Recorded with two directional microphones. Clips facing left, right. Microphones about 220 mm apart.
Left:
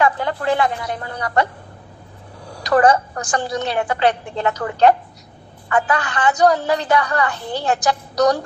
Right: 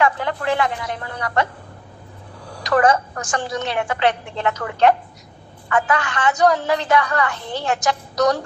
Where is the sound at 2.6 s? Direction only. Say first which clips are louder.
Left 2 dB; 35° left (ahead or behind).